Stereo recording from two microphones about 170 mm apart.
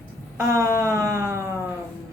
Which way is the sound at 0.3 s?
20° right (ahead or behind).